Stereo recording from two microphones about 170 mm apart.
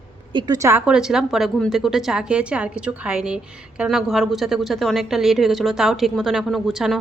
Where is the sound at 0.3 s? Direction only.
20° right (ahead or behind).